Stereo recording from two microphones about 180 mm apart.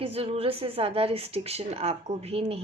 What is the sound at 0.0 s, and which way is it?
A woman's voice, 30° right (ahead or behind).